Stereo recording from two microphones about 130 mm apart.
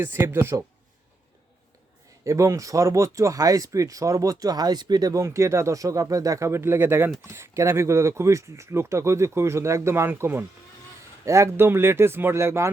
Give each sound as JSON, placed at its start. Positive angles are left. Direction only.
{"t": 0.0, "sound": "speech", "side_deg": -15}
{"t": 2.2, "sound": "speech", "side_deg": -25}